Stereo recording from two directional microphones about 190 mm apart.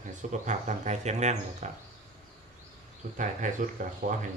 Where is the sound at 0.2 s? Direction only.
40° right (ahead or behind).